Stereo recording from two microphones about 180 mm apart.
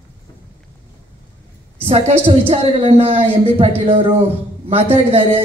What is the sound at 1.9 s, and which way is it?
A woman's voice, 30° right (ahead or behind).